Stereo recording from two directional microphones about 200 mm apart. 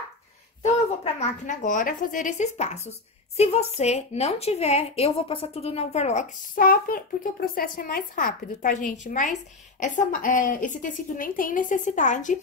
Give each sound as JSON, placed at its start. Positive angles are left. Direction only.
{"t": 0.6, "sound": "a woman's voice", "side_deg": 35}